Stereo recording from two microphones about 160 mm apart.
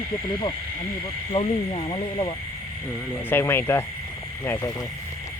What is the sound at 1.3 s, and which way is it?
Speech, 35° left (ahead or behind).